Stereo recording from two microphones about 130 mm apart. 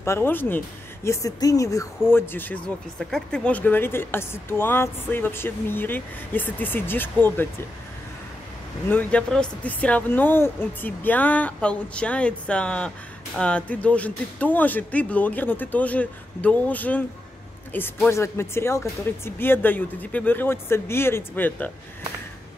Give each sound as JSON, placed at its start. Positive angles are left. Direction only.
{"t": 0.0, "sound": "speech", "side_deg": 20}
{"t": 8.8, "sound": "speech", "side_deg": 10}